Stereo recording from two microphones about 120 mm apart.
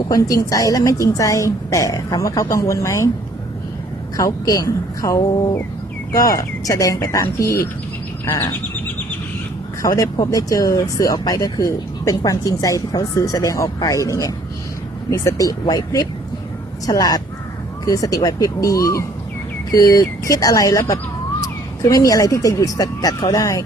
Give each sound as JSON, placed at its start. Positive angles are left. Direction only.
{"t": 0.1, "sound": "a woman's voice", "side_deg": 30}
{"t": 4.2, "sound": "a woman's voice", "side_deg": 30}
{"t": 9.8, "sound": "a woman's voice", "side_deg": 30}